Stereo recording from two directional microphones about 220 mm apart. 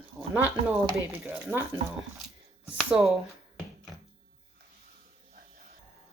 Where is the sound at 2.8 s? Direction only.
Centre (ahead or behind).